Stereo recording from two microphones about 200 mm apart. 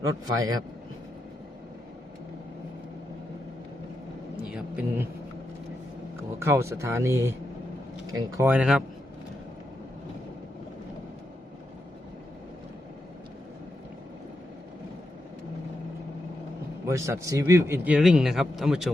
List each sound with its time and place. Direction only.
0.0 s a man's voice: 15° right (ahead or behind)
4.4 s a sound: 5° right (ahead or behind)
6.4 s a man's voice: 15° right (ahead or behind)
8.4 s speech: 5° right (ahead or behind)
16.8 s a man's voice: 15° right (ahead or behind)